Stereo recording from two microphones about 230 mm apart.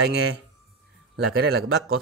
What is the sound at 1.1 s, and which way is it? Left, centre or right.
Speech, right.